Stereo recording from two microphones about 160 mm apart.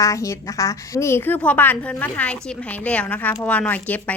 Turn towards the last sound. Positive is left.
turn(degrees=10)  # may be behind; listen again after turning